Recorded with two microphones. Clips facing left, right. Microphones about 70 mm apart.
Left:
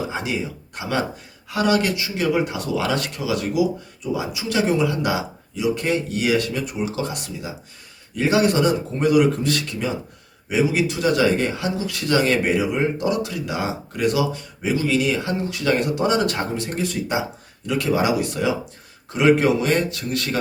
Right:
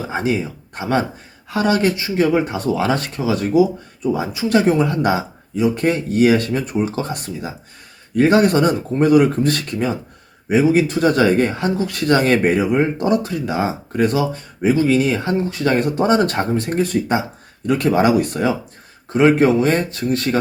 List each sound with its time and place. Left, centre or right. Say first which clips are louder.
0.1 s speech: right 5 dB; right